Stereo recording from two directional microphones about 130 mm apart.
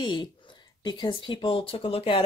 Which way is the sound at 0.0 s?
35° left (ahead or behind).